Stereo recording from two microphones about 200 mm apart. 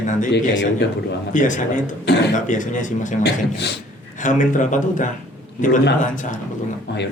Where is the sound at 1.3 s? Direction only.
40° left (ahead or behind).